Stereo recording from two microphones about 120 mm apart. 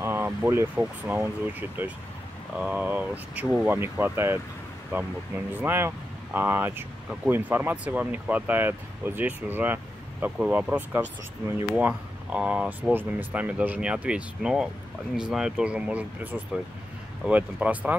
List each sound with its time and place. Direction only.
0.0 s speech: 20° right (ahead or behind)